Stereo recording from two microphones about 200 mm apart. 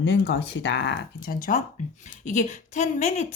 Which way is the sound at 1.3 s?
40° left (ahead or behind).